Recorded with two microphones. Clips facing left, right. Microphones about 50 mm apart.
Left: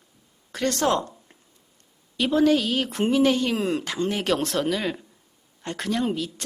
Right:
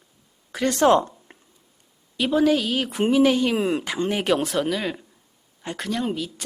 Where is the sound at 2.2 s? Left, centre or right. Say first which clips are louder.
Even; centre.